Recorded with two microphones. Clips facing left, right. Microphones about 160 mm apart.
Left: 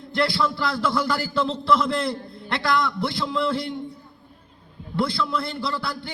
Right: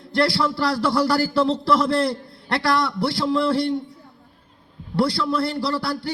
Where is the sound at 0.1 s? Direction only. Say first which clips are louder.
Right 3 dB; 35° right (ahead or behind).